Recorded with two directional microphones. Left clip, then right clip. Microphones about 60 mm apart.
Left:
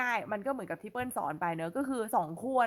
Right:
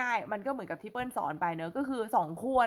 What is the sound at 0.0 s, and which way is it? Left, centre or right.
Speech, centre.